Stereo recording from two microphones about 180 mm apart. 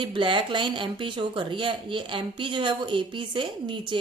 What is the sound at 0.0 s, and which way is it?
Speech, 25° right (ahead or behind).